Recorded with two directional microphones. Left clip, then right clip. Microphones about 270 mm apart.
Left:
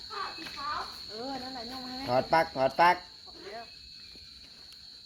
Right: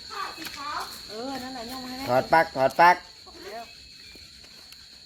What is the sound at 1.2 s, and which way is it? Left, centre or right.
Cricket, right.